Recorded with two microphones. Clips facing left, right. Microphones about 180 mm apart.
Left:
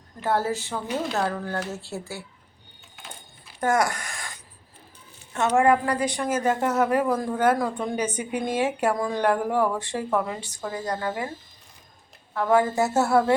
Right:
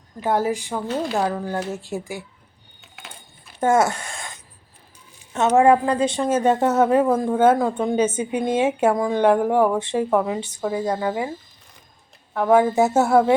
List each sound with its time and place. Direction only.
0.2 s speech: 15° right (ahead or behind)
2.8 s a sound: 75° right (ahead or behind)
3.6 s speech: 25° right (ahead or behind)
5.5 s speech: 25° right (ahead or behind)
12.3 s speech: 20° right (ahead or behind)